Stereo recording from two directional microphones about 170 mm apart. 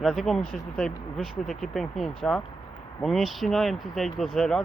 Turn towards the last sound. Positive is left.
turn(degrees=5)  # may be behind; listen again after turning